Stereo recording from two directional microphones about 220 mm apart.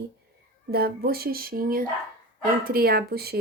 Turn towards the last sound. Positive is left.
turn(degrees=-45)  # may be behind; listen again after turning